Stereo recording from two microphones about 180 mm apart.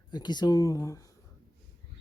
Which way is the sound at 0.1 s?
25° left (ahead or behind).